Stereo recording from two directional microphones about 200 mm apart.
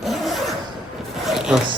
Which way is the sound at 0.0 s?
Centre (ahead or behind).